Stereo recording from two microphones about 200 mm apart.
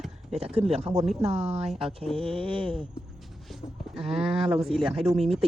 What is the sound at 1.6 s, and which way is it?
Speech, centre (ahead or behind).